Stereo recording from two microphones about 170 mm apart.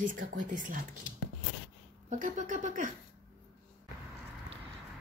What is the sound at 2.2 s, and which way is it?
Speech, 50° right (ahead or behind).